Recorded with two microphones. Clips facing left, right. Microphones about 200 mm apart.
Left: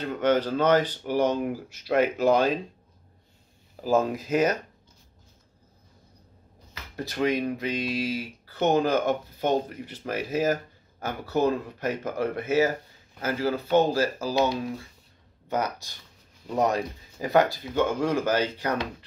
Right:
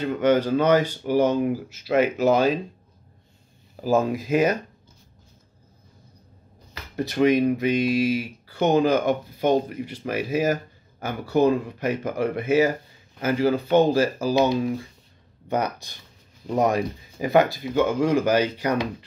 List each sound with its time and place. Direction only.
0.0 s speech: 10° right (ahead or behind)
3.8 s speech: 10° right (ahead or behind)
7.2 s speech: 15° right (ahead or behind)
15.4 s speech: 15° right (ahead or behind)